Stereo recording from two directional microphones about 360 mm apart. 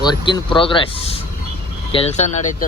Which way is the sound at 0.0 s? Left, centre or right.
Centre.